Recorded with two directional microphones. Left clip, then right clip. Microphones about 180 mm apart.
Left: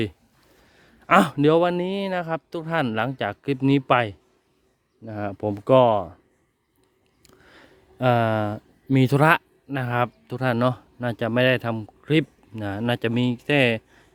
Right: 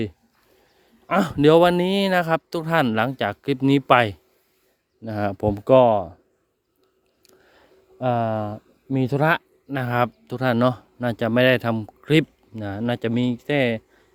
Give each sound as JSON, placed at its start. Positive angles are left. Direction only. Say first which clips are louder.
{"t": 1.0, "sound": "speech", "louder": "left 5 dB", "side_deg": 20}
{"t": 1.3, "sound": "speech", "louder": "right 4 dB", "side_deg": -5}
{"t": 7.2, "sound": "a sound", "louder": "left 3 dB", "side_deg": 10}
{"t": 9.2, "sound": "a sound", "louder": "left 1 dB", "side_deg": 10}
{"t": 9.7, "sound": "speech", "louder": "right 2 dB", "side_deg": 0}
{"t": 12.5, "sound": "speech", "louder": "even", "side_deg": 10}